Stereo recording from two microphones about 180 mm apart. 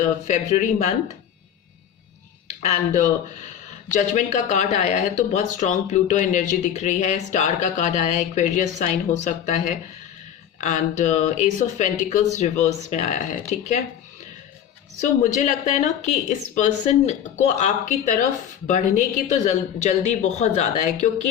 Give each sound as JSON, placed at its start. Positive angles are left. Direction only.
{"t": 0.0, "sound": "speech", "side_deg": 45}
{"t": 2.6, "sound": "a woman's voice", "side_deg": 40}
{"t": 15.0, "sound": "a woman's voice", "side_deg": 45}